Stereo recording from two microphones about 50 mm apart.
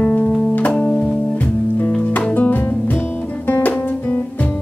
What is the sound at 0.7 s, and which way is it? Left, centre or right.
Music, left.